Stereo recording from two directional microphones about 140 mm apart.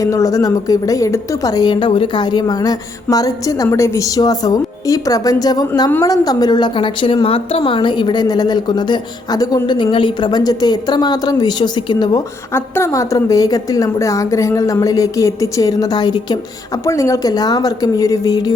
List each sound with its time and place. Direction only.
0.0 s a woman's voice: 25° left (ahead or behind)
12.5 s a woman's voice: 20° left (ahead or behind)